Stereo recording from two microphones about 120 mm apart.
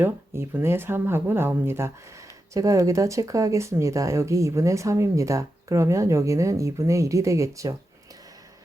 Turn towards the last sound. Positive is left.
turn(degrees=-25)  # may be behind; listen again after turning